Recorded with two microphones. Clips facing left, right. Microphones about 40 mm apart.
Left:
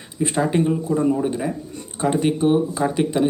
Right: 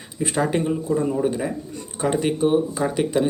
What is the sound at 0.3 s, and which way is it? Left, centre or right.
Speech, centre.